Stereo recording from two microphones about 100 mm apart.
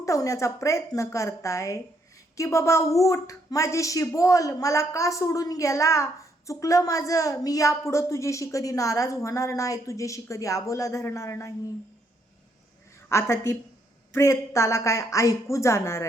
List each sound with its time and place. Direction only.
0.0 s speech: 30° left (ahead or behind)
13.1 s a woman's voice: 25° left (ahead or behind)